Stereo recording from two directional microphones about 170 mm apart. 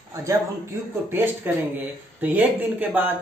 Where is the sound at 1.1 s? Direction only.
15° right (ahead or behind).